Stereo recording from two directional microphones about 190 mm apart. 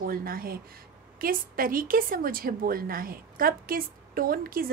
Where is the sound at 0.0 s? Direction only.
50° right (ahead or behind).